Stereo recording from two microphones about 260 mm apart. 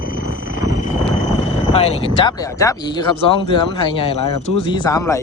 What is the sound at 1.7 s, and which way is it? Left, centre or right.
Speech, left.